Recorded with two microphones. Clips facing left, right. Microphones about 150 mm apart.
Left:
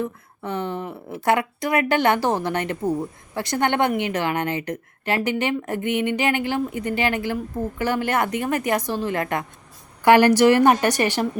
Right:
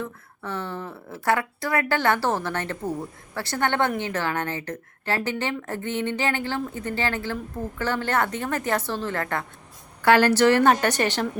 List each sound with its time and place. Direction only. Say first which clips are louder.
0.0 s a woman's voice: left 5 dB; 15° left (ahead or behind)